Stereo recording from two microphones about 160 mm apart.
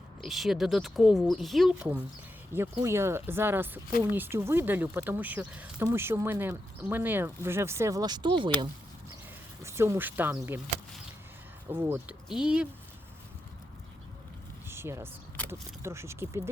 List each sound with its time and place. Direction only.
0.2 s speech: centre (ahead or behind)
2.5 s speech: 15° right (ahead or behind)
9.6 s speech: 15° right (ahead or behind)
11.7 s speech: 10° right (ahead or behind)
14.7 s speech: 15° right (ahead or behind)